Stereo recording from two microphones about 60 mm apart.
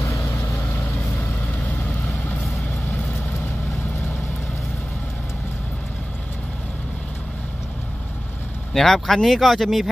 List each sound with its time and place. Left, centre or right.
0.0 s vehicle: left
8.7 s speech: centre